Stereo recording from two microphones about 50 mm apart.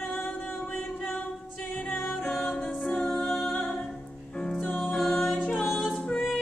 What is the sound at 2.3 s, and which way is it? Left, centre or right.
Music, centre.